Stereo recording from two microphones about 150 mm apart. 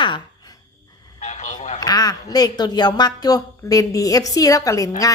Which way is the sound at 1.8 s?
25° left (ahead or behind).